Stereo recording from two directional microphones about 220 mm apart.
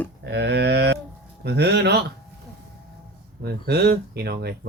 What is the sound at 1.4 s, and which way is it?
Speech, 50° right (ahead or behind).